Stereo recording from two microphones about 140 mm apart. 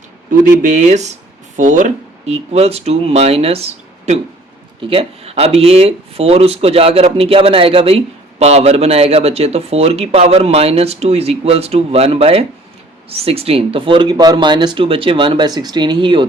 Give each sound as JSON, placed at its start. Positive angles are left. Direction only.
{"t": 0.3, "sound": "speech", "side_deg": -60}
{"t": 1.5, "sound": "speech", "side_deg": -65}